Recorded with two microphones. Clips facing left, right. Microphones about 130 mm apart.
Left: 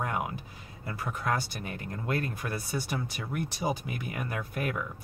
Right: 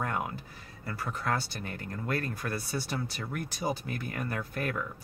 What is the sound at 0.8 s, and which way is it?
Speech, 15° left (ahead or behind).